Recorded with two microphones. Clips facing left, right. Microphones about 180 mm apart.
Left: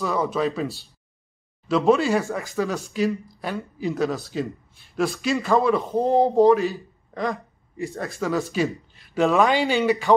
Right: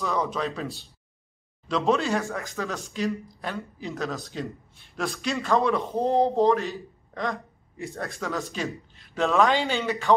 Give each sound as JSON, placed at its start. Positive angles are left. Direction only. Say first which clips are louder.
{"t": 0.0, "sound": "speech", "louder": "left 4 dB", "side_deg": 5}
{"t": 2.5, "sound": "a man's voice", "louder": "left 6 dB", "side_deg": 10}
{"t": 8.6, "sound": "speech", "louder": "left 5 dB", "side_deg": 15}